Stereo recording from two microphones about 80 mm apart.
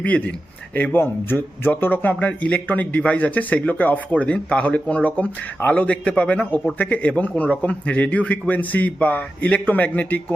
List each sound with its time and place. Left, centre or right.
0.0 s a man's voice: centre